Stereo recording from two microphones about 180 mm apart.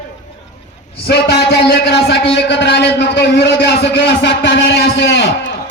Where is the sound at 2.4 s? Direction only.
70° left (ahead or behind).